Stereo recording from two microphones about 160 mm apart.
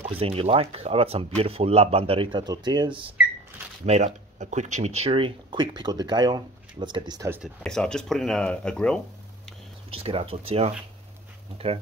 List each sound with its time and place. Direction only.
0.1 s speech: 35° right (ahead or behind)
3.8 s speech: 45° right (ahead or behind); by 7.2 s 25° right (ahead or behind)
7.4 s speech: 5° left (ahead or behind)
9.9 s speech: 35° right (ahead or behind)